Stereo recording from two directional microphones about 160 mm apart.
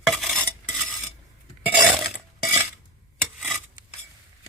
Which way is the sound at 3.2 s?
Centre (ahead or behind).